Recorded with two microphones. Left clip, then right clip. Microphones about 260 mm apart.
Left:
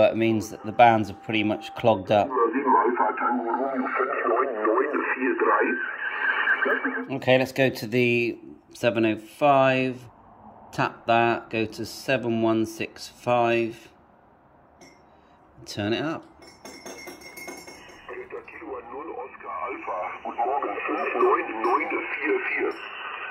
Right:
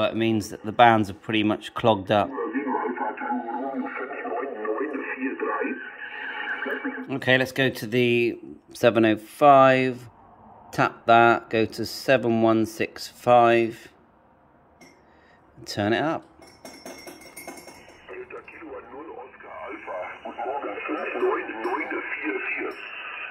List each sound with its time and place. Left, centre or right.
0.2 s speech: right
0.7 s speech: centre
1.6 s speech: right
2.3 s radio: centre
7.1 s speech: centre
15.6 s speech: centre
19.6 s radio: centre